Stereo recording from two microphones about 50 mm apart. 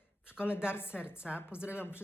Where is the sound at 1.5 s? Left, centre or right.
Right.